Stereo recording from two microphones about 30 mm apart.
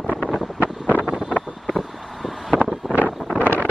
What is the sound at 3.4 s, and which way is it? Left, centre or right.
Wind noise, left.